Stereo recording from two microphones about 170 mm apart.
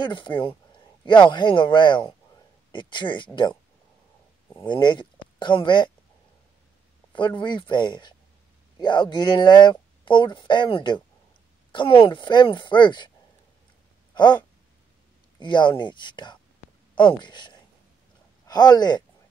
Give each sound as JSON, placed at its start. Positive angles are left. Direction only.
{"t": 0.0, "sound": "speech", "side_deg": 30}
{"t": 4.6, "sound": "speech", "side_deg": 25}
{"t": 7.2, "sound": "speech", "side_deg": 25}
{"t": 14.1, "sound": "a sound", "side_deg": 25}
{"t": 15.3, "sound": "a woman's voice", "side_deg": 25}